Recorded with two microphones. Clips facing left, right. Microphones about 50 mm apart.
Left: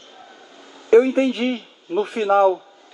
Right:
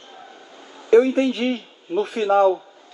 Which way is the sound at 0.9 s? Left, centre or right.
Centre.